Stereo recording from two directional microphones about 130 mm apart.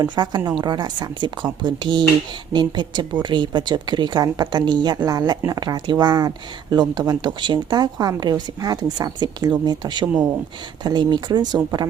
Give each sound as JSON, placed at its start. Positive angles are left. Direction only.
{"t": 0.0, "sound": "speech", "side_deg": -35}